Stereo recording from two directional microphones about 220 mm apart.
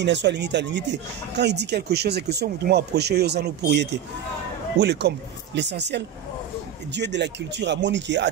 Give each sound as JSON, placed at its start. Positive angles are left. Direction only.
{"t": 0.0, "sound": "speech", "side_deg": -50}